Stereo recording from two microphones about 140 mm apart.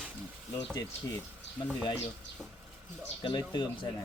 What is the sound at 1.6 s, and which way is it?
Speech, 10° left (ahead or behind).